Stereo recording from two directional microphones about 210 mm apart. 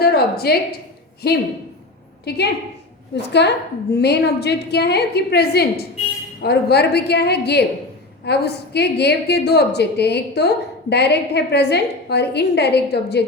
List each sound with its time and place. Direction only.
0.0 s a woman's voice: 50° left (ahead or behind)